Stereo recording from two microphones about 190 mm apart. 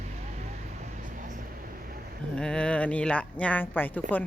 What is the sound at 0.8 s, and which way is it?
Vehicle, 40° right (ahead or behind).